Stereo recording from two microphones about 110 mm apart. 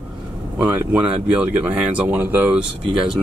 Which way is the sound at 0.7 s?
15° right (ahead or behind).